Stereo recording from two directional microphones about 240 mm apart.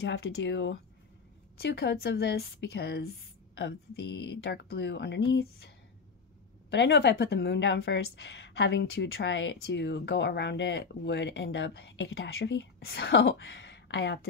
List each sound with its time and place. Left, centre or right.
0.1 s a woman's voice: left
6.7 s a woman's voice: left